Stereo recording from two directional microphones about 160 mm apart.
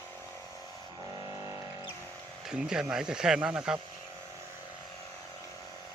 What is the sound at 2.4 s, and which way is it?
Speech, 5° right (ahead or behind).